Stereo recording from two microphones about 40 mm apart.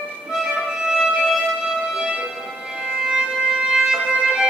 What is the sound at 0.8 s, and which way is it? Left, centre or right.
Music, centre.